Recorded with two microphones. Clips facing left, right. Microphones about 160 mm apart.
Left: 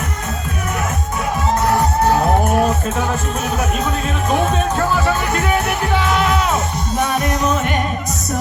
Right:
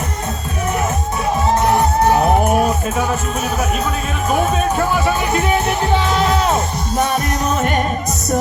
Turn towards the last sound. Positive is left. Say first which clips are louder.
# even
turn(degrees=-40)  # may be behind; listen again after turning